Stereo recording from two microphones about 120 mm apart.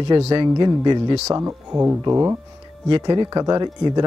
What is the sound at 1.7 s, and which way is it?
Speech, 5° right (ahead or behind).